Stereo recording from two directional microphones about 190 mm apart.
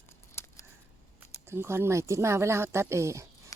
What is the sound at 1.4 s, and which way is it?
Speech, 15° right (ahead or behind).